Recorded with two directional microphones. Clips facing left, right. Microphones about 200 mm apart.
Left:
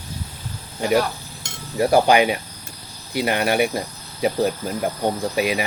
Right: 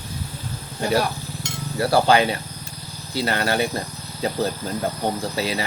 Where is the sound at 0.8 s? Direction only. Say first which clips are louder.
Left 2 dB; 15° left (ahead or behind).